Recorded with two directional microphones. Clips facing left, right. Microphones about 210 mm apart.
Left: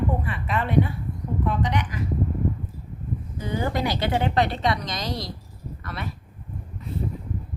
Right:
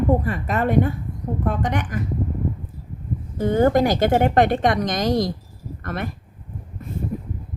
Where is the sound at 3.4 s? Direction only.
50° right (ahead or behind).